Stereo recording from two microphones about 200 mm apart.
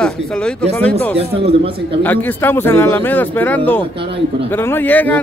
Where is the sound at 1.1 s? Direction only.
30° right (ahead or behind).